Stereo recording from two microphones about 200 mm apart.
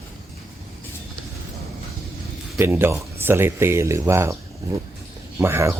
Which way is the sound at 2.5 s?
10° right (ahead or behind).